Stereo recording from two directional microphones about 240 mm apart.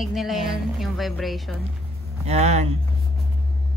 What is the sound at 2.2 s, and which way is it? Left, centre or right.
Speech, right.